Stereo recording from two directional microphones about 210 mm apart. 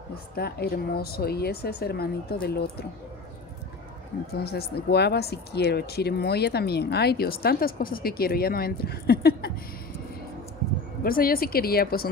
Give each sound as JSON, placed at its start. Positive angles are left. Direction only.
{"t": 0.4, "sound": "speech", "side_deg": 50}
{"t": 4.3, "sound": "speech", "side_deg": 50}
{"t": 11.1, "sound": "speech", "side_deg": 45}